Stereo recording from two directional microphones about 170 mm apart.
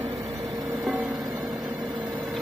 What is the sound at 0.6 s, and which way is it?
Music, centre (ahead or behind).